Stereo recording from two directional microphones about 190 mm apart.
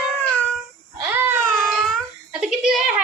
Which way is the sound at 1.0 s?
10° right (ahead or behind).